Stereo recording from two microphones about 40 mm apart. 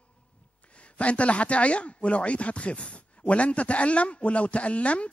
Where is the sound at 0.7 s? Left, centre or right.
Left.